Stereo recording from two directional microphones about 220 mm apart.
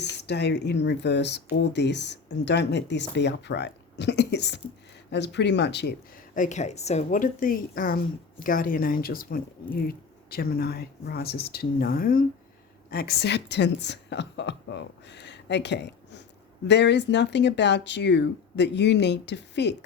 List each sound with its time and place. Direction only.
0.0 s speech: 50° left (ahead or behind)
6.3 s a woman's voice: 35° left (ahead or behind); by 19.7 s 50° left (ahead or behind)